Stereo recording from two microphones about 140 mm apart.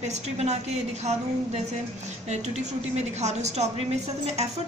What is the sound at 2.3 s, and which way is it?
A woman's voice, 55° right (ahead or behind).